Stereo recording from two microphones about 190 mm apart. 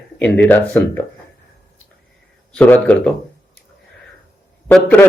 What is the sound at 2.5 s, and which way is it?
Speech, 10° left (ahead or behind).